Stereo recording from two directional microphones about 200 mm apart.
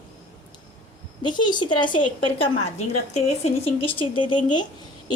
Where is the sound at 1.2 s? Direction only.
20° left (ahead or behind).